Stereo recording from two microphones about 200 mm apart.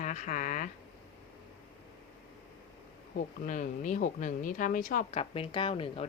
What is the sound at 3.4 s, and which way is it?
Speech, 40° left (ahead or behind).